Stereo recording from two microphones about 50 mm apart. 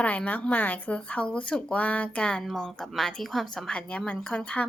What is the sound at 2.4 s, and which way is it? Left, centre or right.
A woman's voice, centre.